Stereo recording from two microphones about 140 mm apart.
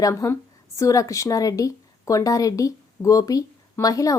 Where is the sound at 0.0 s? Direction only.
20° left (ahead or behind).